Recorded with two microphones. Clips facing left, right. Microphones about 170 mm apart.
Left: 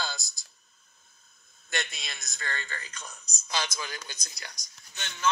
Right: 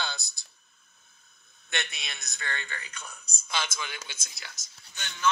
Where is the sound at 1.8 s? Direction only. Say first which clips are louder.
Left 1 dB; centre (ahead or behind).